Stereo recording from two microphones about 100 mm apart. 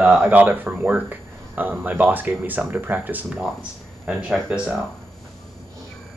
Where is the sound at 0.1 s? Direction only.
15° right (ahead or behind).